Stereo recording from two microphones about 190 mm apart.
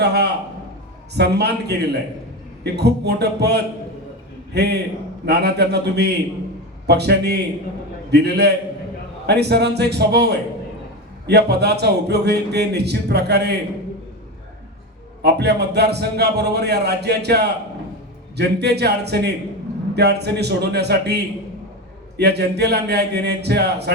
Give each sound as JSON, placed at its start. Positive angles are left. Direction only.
{"t": 0.0, "sound": "speech", "side_deg": -60}
{"t": 15.2, "sound": "speech", "side_deg": -60}
{"t": 22.2, "sound": "speech", "side_deg": -60}